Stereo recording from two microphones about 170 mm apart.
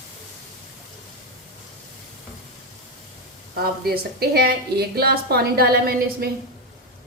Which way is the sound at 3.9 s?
65° right (ahead or behind).